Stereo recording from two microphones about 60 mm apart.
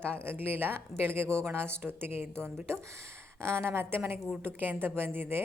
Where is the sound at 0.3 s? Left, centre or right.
Right.